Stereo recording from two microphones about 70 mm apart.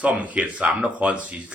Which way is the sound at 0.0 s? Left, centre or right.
Right.